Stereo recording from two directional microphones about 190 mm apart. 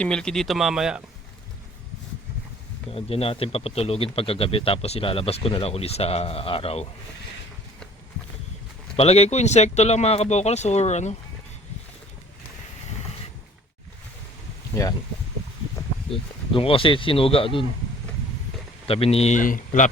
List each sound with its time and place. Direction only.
0.0 s speech: 5° left (ahead or behind)
2.9 s speech: 30° left (ahead or behind)
9.0 s speech: 35° left (ahead or behind)
16.5 s speech: 30° left (ahead or behind)
18.9 s speech: 30° left (ahead or behind)